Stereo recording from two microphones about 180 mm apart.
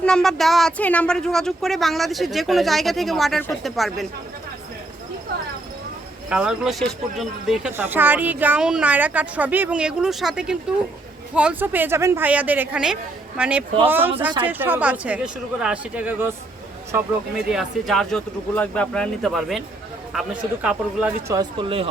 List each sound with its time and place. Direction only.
0.0 s speech: 5° left (ahead or behind)
6.2 s speech: 5° right (ahead or behind)
17.3 s speech: centre (ahead or behind)
21.3 s speech: 30° right (ahead or behind)